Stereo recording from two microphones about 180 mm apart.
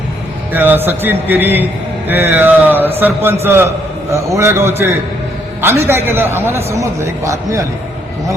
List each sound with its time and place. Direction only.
0.5 s a man's voice: 10° right (ahead or behind)